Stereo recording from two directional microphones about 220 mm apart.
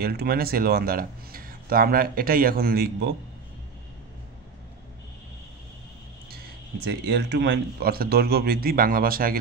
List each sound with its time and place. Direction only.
0.0 s speech: 45° right (ahead or behind)
6.3 s speech: 45° right (ahead or behind)